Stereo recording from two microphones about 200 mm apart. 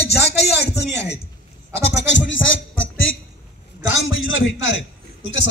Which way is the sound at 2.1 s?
70° left (ahead or behind).